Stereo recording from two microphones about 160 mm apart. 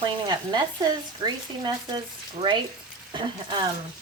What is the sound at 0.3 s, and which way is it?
Speech, 25° right (ahead or behind).